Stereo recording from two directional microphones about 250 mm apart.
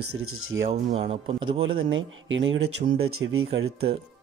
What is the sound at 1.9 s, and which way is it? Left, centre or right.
Speech, right.